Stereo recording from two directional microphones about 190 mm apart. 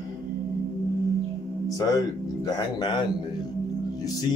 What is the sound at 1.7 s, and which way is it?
Speech, 20° left (ahead or behind).